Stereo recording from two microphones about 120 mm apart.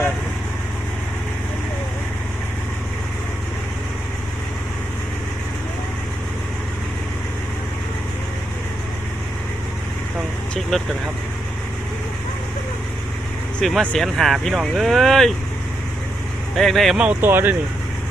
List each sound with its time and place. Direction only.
10.5 s vehicle: centre (ahead or behind)
13.6 s speech: centre (ahead or behind)
16.6 s speech: centre (ahead or behind)
17.2 s speech: 20° right (ahead or behind)